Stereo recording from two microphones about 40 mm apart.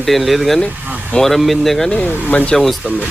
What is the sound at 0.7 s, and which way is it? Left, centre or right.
Vehicle, right.